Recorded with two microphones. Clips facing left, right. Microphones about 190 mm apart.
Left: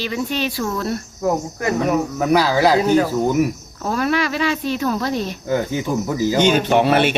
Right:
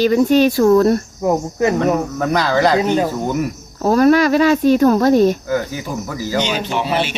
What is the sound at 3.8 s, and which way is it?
Speech, 40° right (ahead or behind).